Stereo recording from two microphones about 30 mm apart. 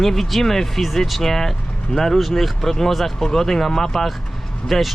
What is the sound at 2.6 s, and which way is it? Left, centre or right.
Speech, centre.